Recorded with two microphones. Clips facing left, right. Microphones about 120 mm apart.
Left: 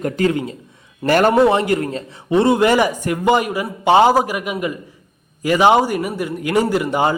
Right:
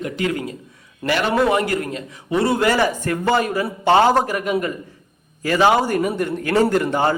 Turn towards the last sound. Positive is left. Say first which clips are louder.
# left 1 dB
turn(degrees=15)  # may be behind; listen again after turning